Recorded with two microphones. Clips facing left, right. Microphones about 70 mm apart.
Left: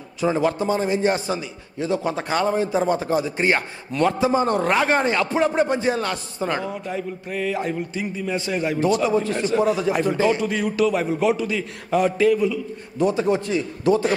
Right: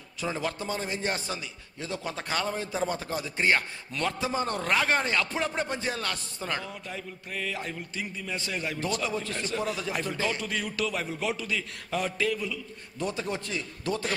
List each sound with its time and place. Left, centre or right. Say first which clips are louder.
0.2 s a man's voice: left 11 dB; centre